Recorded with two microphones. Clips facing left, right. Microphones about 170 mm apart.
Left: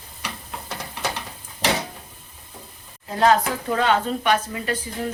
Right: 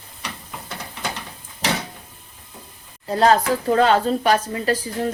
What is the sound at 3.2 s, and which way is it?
A woman's voice, 35° right (ahead or behind).